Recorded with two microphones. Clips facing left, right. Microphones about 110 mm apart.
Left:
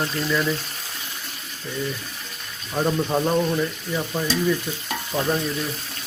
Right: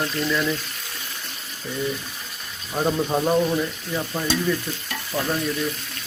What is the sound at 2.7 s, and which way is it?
Speech, 5° right (ahead or behind).